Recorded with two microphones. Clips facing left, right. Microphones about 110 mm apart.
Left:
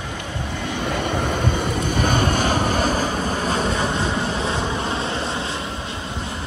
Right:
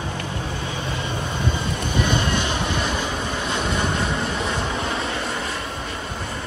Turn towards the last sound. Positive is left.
turn(degrees=25)  # may be behind; listen again after turning